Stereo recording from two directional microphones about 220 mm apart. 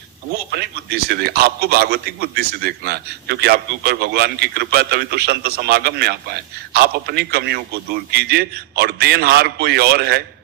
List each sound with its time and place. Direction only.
0.5 s a man's voice: 45° right (ahead or behind)